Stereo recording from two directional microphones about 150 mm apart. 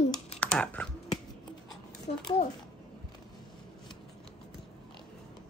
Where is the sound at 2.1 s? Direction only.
45° left (ahead or behind).